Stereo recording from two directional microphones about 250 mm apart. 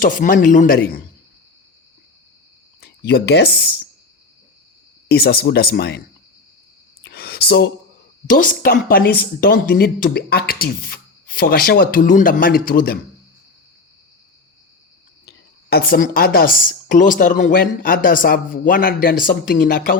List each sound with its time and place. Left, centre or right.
0.0 s speech: left
3.1 s speech: left
5.0 s speech: left
7.0 s a sound: left
8.3 s speech: left
15.3 s speech: left